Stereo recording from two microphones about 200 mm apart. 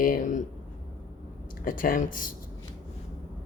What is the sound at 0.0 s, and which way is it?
Speech, 40° left (ahead or behind).